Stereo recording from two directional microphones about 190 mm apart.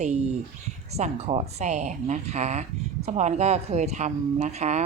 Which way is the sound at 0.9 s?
30° right (ahead or behind).